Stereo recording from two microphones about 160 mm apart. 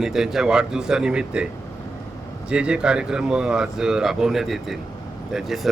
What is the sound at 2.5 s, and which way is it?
A man's voice, 5° right (ahead or behind).